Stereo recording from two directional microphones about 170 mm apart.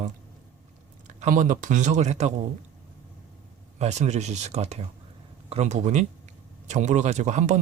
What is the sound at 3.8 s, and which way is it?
Speech, 40° right (ahead or behind).